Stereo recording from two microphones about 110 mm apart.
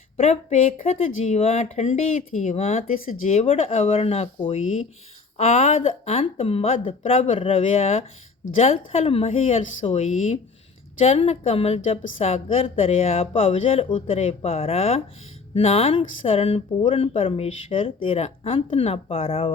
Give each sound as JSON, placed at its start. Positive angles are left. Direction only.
{"t": 0.2, "sound": "speech", "side_deg": 80}
{"t": 3.3, "sound": "a woman's voice", "side_deg": 75}
{"t": 5.4, "sound": "a woman's voice", "side_deg": 90}
{"t": 11.0, "sound": "a woman's voice", "side_deg": 70}
{"t": 13.9, "sound": "a woman's voice", "side_deg": 90}